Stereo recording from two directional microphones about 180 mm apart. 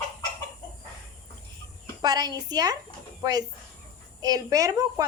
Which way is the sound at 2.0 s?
20° right (ahead or behind).